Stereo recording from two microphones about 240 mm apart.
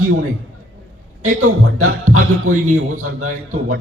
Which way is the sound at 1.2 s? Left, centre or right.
Right.